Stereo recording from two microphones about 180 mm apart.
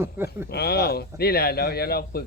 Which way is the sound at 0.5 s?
60° left (ahead or behind).